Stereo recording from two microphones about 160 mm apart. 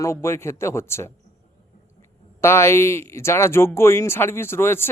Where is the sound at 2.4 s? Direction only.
15° left (ahead or behind).